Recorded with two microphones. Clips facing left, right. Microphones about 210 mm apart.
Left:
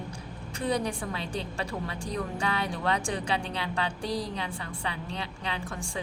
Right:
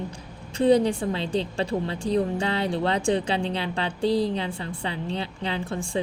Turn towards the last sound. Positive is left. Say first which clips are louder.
# right 7 dB
turn(degrees=-30)  # may be behind; listen again after turning